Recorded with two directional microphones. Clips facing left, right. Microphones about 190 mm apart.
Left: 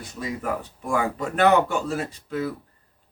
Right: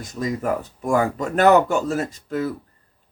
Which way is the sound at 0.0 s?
45° right (ahead or behind).